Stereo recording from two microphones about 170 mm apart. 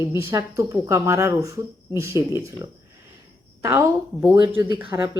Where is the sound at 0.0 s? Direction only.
15° right (ahead or behind).